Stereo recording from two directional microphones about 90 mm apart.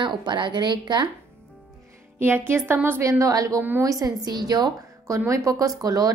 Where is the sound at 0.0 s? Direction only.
55° right (ahead or behind).